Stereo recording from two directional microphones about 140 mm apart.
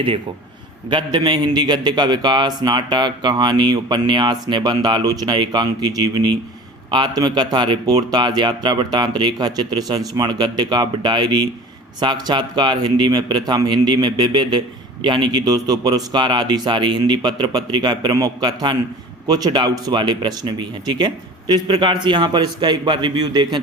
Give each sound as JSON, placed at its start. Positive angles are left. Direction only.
{"t": 0.9, "sound": "a man's voice", "side_deg": -35}